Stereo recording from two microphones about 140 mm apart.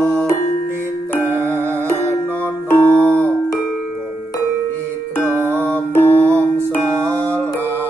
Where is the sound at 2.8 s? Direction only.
15° right (ahead or behind).